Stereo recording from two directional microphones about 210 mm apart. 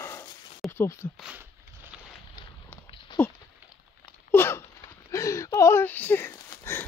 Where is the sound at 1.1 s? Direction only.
5° right (ahead or behind).